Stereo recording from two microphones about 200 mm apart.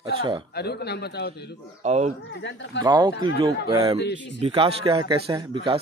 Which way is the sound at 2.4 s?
60° left (ahead or behind).